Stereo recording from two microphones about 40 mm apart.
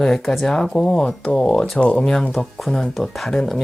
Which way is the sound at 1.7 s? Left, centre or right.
Left.